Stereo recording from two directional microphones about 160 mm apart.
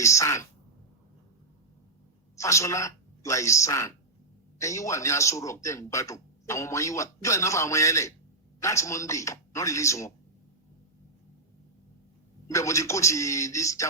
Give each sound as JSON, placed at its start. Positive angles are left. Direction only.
{"t": 0.0, "sound": "a man's voice", "side_deg": 20}
{"t": 2.3, "sound": "a woman's voice", "side_deg": 20}
{"t": 12.5, "sound": "a man's voice", "side_deg": 20}